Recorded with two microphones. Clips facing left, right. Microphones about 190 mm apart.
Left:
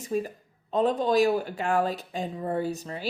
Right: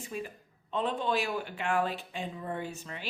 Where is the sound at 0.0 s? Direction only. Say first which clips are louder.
Left 9 dB; 40° left (ahead or behind).